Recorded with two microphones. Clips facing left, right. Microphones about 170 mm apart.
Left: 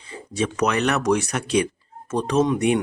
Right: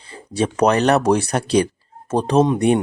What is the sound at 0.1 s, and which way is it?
Speech, 30° right (ahead or behind).